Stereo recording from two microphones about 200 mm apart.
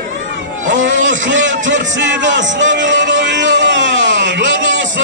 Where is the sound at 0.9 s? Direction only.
70° right (ahead or behind).